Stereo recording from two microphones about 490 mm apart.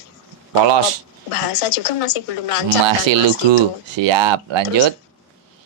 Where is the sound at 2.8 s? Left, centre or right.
Right.